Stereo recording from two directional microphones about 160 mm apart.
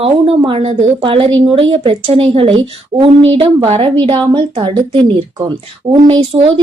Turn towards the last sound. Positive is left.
turn(degrees=-30)  # may be behind; listen again after turning